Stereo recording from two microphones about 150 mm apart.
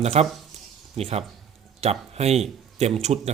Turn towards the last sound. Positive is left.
turn(degrees=-45)  # may be behind; listen again after turning